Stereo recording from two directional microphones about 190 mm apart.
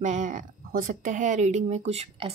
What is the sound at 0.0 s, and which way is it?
Speech, 40° right (ahead or behind).